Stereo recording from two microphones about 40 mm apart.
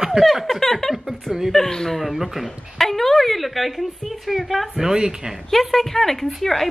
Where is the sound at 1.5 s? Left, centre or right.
Centre.